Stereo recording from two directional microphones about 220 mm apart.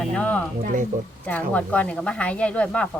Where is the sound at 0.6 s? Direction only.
35° right (ahead or behind).